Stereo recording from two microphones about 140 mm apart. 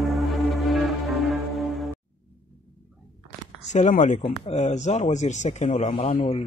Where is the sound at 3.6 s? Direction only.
60° left (ahead or behind).